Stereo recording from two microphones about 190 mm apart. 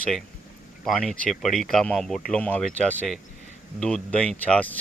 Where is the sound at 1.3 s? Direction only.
Centre (ahead or behind).